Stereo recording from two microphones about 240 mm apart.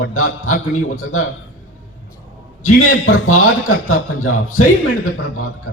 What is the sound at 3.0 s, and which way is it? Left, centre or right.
A man's voice, left.